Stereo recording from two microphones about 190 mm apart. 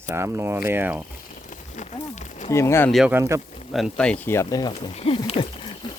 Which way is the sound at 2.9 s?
Centre (ahead or behind).